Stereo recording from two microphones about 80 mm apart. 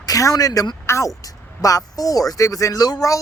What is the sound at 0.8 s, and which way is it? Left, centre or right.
Speech, left.